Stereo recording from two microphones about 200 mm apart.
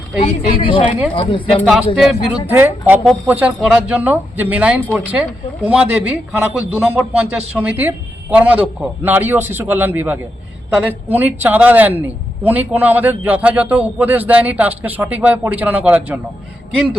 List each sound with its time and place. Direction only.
0.2 s speech: 25° left (ahead or behind)
2.5 s a man's voice: 10° right (ahead or behind)